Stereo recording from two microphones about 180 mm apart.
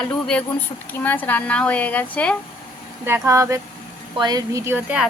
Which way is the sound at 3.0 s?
15° right (ahead or behind).